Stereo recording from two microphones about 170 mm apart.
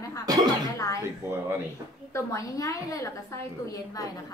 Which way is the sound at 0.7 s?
20° left (ahead or behind).